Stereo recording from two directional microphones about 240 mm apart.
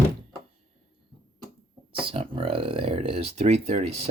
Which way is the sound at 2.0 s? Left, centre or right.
Right.